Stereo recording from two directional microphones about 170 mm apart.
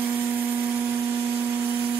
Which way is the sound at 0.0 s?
10° right (ahead or behind).